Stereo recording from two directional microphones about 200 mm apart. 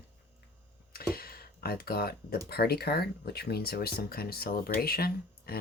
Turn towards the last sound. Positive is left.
turn(degrees=50)  # may be behind; listen again after turning